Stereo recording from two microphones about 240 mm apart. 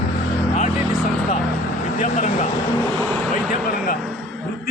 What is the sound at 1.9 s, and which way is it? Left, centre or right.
Speech, left.